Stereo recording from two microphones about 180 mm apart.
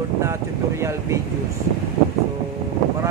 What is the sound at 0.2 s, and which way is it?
Speech, 15° right (ahead or behind).